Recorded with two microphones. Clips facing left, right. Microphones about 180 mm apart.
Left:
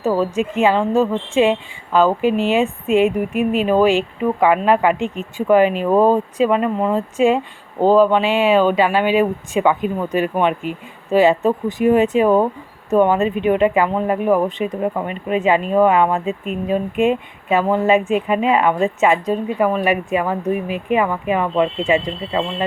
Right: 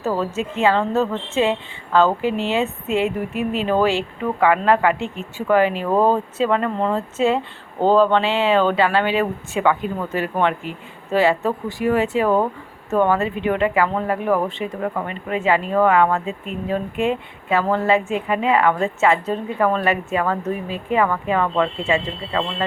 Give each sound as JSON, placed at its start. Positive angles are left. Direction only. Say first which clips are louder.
{"t": 0.0, "sound": "a woman's voice", "louder": "left 4 dB", "side_deg": 10}